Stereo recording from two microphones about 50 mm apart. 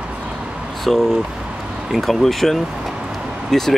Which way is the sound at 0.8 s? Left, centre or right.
Centre.